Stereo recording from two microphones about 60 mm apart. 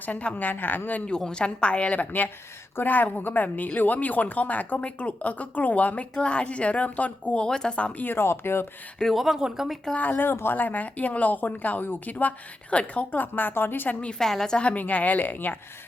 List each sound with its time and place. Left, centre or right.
0.0 s a woman's voice: left
1.1 s a woman's voice: centre
8.0 s a woman's voice: left
9.1 s speech: centre
9.9 s a woman's voice: left
14.0 s a woman's voice: centre; by 15.5 s left